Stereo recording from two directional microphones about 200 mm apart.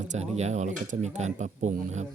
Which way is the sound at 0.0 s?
35° right (ahead or behind).